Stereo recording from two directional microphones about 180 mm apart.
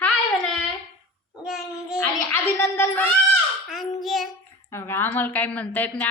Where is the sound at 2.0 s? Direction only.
10° left (ahead or behind).